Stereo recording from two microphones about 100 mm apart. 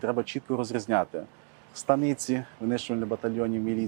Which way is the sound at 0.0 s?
20° right (ahead or behind).